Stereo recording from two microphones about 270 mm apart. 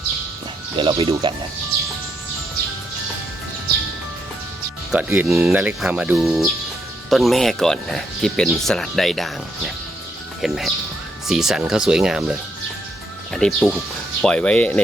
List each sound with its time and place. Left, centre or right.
0.8 s speech: right
4.9 s speech: centre